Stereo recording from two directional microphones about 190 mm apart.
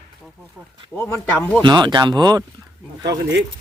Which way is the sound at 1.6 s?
25° right (ahead or behind).